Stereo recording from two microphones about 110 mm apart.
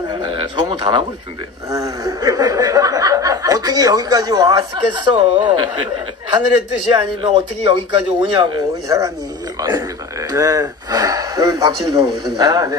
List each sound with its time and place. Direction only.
0.1 s a sound: 45° right (ahead or behind)
1.7 s speech: 30° right (ahead or behind)
6.9 s speech: 60° right (ahead or behind)
8.2 s speech: 50° right (ahead or behind)
8.8 s a man's voice: 30° right (ahead or behind)